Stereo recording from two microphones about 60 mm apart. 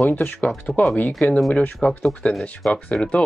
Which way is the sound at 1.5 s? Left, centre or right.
Left.